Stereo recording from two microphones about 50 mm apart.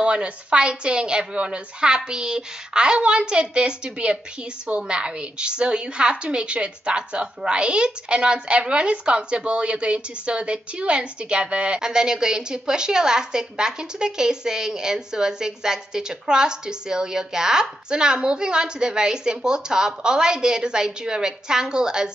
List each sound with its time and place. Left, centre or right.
0.0 s a woman's voice: right